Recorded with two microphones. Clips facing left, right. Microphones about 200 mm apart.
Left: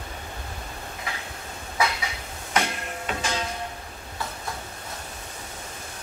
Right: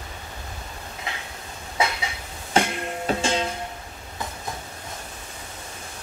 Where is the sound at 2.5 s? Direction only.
30° right (ahead or behind).